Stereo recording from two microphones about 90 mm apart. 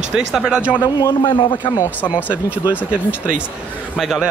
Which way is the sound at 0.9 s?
60° left (ahead or behind).